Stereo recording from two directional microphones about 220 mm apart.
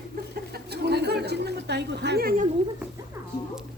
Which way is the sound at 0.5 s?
45° right (ahead or behind).